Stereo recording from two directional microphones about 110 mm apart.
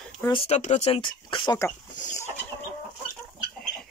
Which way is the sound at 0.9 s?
45° left (ahead or behind).